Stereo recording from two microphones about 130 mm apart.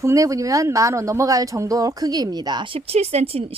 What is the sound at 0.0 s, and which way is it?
Speech, 25° right (ahead or behind).